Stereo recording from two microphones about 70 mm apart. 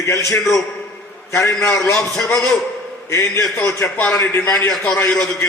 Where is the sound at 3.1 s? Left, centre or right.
Left.